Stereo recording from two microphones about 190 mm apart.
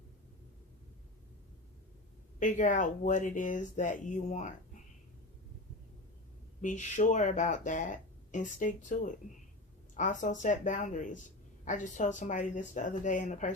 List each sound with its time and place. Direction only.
2.4 s speech: 40° left (ahead or behind)
6.6 s speech: 40° left (ahead or behind)